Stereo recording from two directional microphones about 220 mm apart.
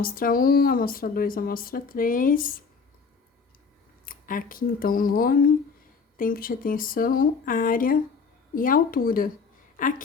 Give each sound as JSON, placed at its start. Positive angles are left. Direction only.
{"t": 0.0, "sound": "speech", "side_deg": 40}
{"t": 4.0, "sound": "speech", "side_deg": 40}